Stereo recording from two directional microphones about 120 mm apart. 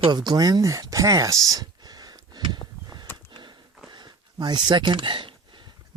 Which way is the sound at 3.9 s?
40° right (ahead or behind).